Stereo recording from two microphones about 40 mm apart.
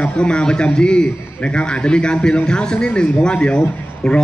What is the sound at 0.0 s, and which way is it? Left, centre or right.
A man's voice, left.